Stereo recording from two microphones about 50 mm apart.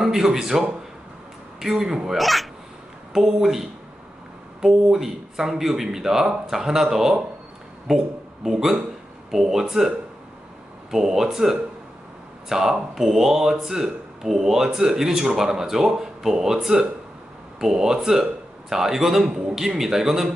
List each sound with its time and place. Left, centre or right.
0.0 s speech: centre
2.1 s speech: centre
4.9 s speech: centre
8.5 s speech: centre
10.9 s speech: centre